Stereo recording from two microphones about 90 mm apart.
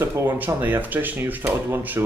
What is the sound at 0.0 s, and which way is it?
A man's voice, 25° right (ahead or behind).